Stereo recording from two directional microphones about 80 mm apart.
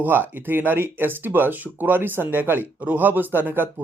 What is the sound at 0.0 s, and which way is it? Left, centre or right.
Speech, right.